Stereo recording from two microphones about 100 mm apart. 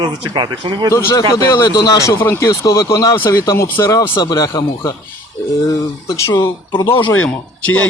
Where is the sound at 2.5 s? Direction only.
35° left (ahead or behind).